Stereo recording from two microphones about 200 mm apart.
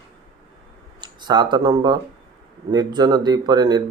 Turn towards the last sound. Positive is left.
turn(degrees=-20)  # may be behind; listen again after turning